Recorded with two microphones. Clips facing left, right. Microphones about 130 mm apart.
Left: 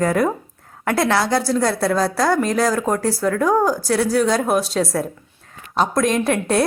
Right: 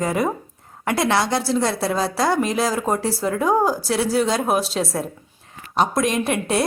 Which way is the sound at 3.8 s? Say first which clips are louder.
Left 2 dB; centre (ahead or behind).